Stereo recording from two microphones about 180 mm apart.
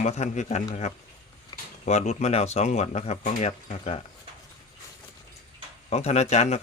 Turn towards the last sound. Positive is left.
turn(degrees=40)  # may be behind; listen again after turning